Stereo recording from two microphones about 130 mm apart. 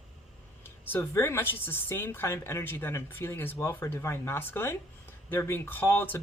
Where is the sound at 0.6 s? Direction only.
20° left (ahead or behind).